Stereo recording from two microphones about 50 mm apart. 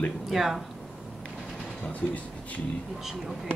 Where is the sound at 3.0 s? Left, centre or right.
Centre.